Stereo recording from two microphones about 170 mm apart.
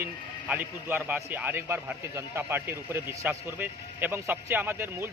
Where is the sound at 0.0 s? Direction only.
15° right (ahead or behind).